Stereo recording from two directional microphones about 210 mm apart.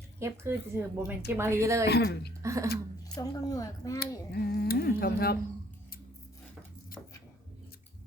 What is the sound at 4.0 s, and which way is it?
Speech, 50° left (ahead or behind).